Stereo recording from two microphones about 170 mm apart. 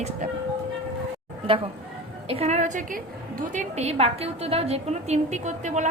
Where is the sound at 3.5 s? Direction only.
40° right (ahead or behind).